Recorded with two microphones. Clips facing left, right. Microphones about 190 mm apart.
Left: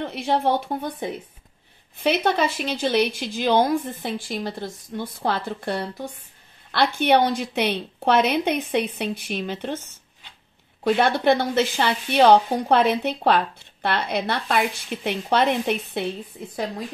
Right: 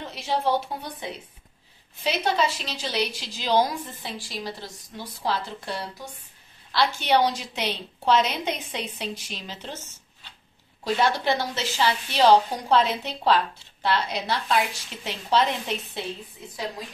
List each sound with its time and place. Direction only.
0.0 s a woman's voice: 55° left (ahead or behind)